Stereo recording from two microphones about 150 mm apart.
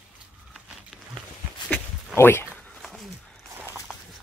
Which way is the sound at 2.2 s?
15° left (ahead or behind).